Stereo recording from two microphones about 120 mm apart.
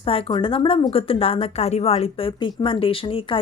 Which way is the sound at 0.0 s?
50° left (ahead or behind).